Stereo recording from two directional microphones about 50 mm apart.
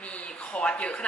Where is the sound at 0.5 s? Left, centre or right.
Left.